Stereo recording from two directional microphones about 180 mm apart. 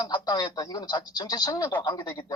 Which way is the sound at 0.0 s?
25° left (ahead or behind).